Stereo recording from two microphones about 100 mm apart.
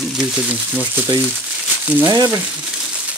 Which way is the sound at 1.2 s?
15° right (ahead or behind).